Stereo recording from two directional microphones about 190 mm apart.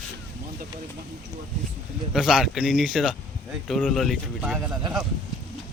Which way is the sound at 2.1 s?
Centre (ahead or behind).